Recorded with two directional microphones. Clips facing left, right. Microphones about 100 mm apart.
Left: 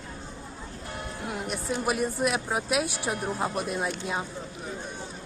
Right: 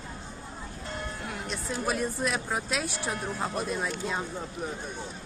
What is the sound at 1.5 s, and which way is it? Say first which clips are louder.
Speech: left 2 dB; 10° left (ahead or behind).